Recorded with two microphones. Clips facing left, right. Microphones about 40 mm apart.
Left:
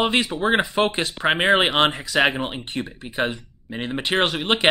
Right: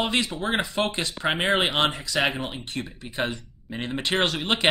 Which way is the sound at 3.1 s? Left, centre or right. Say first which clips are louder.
Left 4 dB; centre.